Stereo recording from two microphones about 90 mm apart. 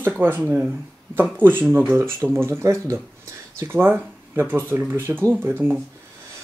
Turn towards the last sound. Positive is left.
turn(degrees=-20)  # may be behind; listen again after turning